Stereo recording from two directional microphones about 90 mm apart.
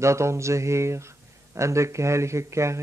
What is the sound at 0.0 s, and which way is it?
Speech, 30° right (ahead or behind).